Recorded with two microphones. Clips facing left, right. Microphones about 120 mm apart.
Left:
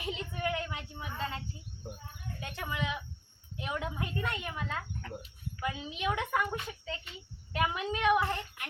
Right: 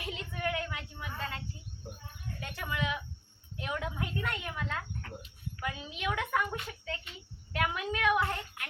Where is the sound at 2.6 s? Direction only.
20° left (ahead or behind).